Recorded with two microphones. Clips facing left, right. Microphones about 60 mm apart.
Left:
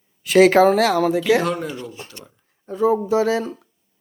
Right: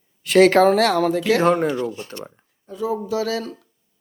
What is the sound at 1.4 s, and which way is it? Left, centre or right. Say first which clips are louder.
Speech: right 6 dB; right.